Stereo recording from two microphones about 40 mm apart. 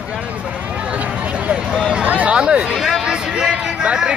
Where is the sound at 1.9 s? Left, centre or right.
Right.